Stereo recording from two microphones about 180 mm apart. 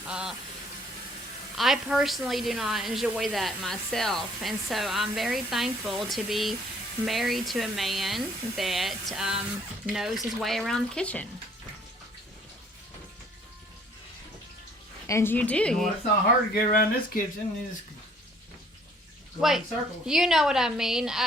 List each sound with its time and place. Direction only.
0.1 s a sound: 5° right (ahead or behind)
1.5 s a woman's voice: centre (ahead or behind)
15.0 s a woman's voice: 15° left (ahead or behind)
16.6 s speech: 50° left (ahead or behind)
19.4 s a woman's voice: centre (ahead or behind)